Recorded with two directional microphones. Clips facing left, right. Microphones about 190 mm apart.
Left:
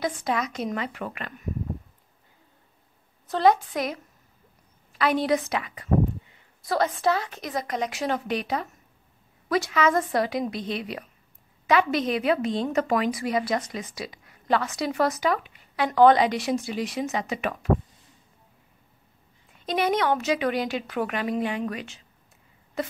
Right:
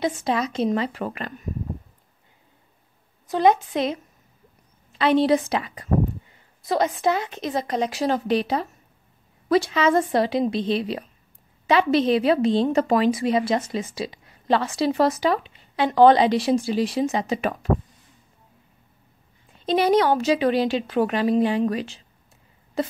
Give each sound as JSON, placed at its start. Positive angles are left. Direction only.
{"t": 0.0, "sound": "a woman's voice", "side_deg": -25}
{"t": 3.3, "sound": "a woman's voice", "side_deg": -15}
{"t": 6.6, "sound": "a woman's voice", "side_deg": -20}
{"t": 19.6, "sound": "a woman's voice", "side_deg": -30}
{"t": 22.8, "sound": "a sound", "side_deg": -30}